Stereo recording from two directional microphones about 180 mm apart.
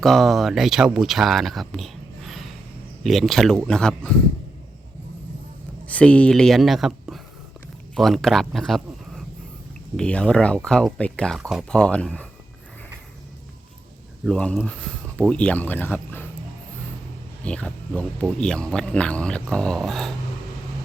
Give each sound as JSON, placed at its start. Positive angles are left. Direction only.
{"t": 0.0, "sound": "speech", "side_deg": 0}
{"t": 5.9, "sound": "speech", "side_deg": 5}
{"t": 14.3, "sound": "speech", "side_deg": 5}
{"t": 17.4, "sound": "speech", "side_deg": 5}